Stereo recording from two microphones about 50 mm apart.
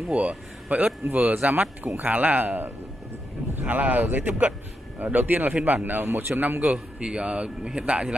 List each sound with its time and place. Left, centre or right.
0.1 s a man's voice: right
5.5 s a man's voice: right
6.7 s a man's voice: right